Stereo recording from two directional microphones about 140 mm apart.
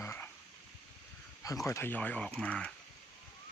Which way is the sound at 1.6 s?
20° left (ahead or behind).